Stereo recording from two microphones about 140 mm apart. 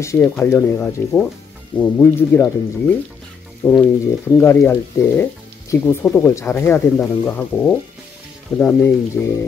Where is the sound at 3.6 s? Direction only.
20° left (ahead or behind).